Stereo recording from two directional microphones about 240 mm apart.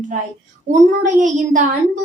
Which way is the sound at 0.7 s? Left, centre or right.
Right.